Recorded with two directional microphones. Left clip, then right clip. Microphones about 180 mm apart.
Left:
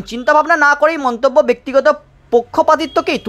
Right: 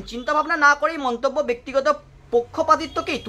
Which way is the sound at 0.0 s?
35° left (ahead or behind).